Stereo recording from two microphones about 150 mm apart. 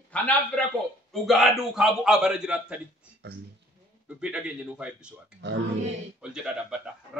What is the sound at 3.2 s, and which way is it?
Speech, 90° right.